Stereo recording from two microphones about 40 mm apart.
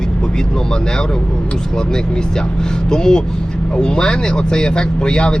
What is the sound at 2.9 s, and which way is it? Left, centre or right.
Speech, centre.